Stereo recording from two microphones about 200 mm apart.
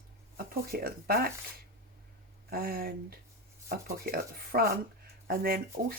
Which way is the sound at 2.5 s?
45° right (ahead or behind).